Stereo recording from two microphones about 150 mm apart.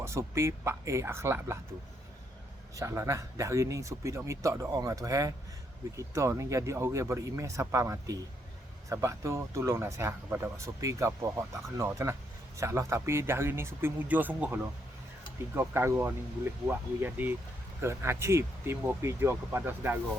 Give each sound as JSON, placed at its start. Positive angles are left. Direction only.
{"t": 0.0, "sound": "speech", "side_deg": -20}
{"t": 2.7, "sound": "speech", "side_deg": -20}